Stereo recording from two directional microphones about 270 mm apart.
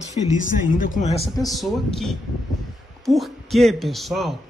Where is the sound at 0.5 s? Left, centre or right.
Left.